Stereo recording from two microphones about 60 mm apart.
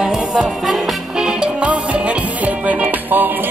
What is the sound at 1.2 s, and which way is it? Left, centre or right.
Music, centre.